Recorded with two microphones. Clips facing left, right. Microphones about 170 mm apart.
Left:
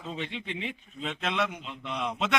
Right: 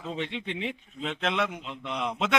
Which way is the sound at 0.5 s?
65° right (ahead or behind).